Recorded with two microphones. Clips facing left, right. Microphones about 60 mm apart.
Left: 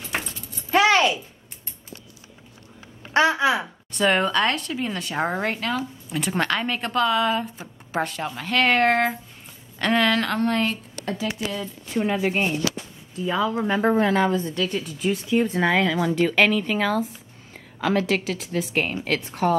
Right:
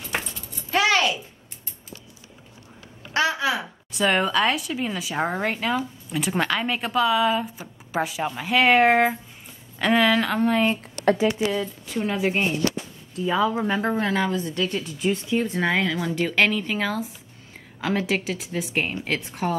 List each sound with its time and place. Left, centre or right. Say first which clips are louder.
0.7 s a sound: left 3 dB; centre
3.1 s speech: left 4 dB; left
3.6 s a woman's voice: left 1 dB; centre
11.9 s a woman's voice: left 2 dB; centre